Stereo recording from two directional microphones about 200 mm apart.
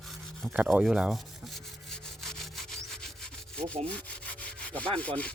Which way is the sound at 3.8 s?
5° left (ahead or behind).